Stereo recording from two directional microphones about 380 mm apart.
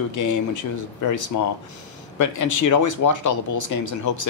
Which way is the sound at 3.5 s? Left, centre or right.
Left.